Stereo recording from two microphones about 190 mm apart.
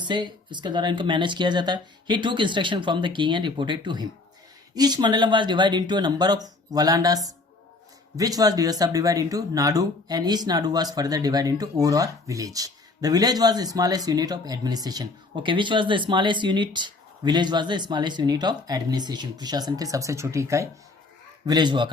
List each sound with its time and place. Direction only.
0.0 s speech: 25° right (ahead or behind)